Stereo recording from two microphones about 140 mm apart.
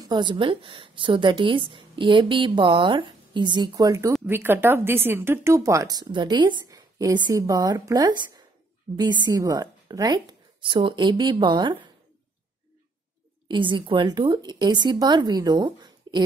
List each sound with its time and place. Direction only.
0.0 s a woman's voice: 30° right (ahead or behind)
13.5 s a woman's voice: 35° right (ahead or behind)